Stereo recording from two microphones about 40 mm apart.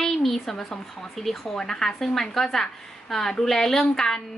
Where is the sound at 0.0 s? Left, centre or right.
Centre.